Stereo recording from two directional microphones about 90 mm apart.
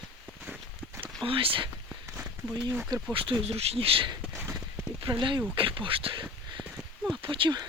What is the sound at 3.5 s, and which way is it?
Speech, 90° right.